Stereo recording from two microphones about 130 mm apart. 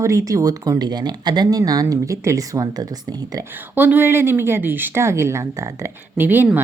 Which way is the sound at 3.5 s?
15° right (ahead or behind).